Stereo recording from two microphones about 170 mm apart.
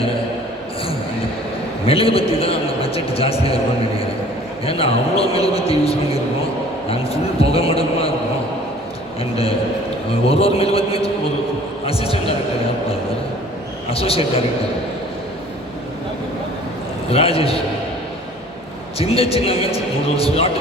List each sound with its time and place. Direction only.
1.8 s a man's voice: 35° left (ahead or behind)
4.6 s a man's voice: 35° left (ahead or behind)
9.3 s a man's voice: 35° left (ahead or behind)
13.9 s a man's voice: 35° left (ahead or behind)
17.1 s a man's voice: 35° left (ahead or behind)
18.9 s a man's voice: 35° left (ahead or behind)